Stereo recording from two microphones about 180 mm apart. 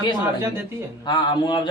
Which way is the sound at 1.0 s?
25° left (ahead or behind).